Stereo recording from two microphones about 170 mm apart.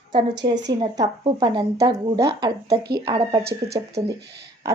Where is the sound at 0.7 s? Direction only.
25° right (ahead or behind).